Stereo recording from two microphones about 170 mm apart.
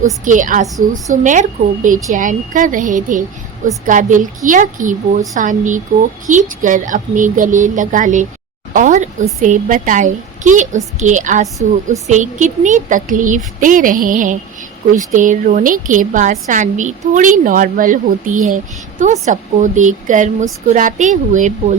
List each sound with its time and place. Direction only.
0.0 s a woman's voice: 50° right (ahead or behind)